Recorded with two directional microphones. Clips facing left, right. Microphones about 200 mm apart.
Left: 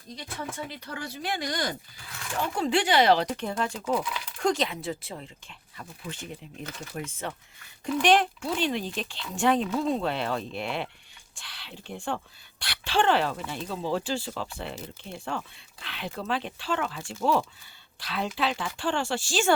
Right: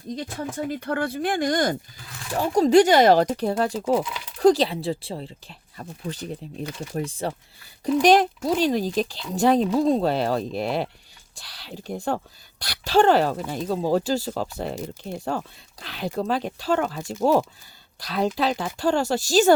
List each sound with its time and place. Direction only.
0.2 s speech: 40° right (ahead or behind)